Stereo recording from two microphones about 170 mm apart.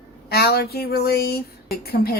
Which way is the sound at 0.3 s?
70° left (ahead or behind).